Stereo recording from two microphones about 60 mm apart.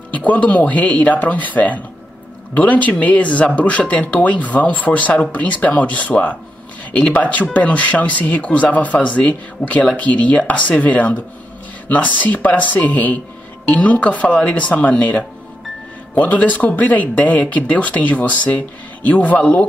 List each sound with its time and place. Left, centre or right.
0.1 s speech: left